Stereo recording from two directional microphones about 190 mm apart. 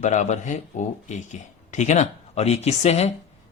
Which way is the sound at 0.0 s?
40° left (ahead or behind).